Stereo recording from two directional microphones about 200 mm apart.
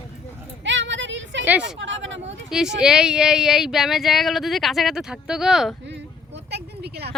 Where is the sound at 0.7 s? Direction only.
65° right (ahead or behind).